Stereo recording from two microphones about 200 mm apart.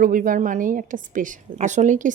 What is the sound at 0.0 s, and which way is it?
A woman's voice, 40° right (ahead or behind).